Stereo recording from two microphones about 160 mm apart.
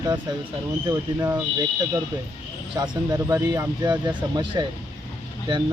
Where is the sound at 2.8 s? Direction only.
20° right (ahead or behind).